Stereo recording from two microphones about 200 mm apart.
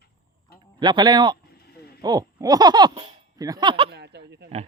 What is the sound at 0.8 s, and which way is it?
Speech, 20° right (ahead or behind).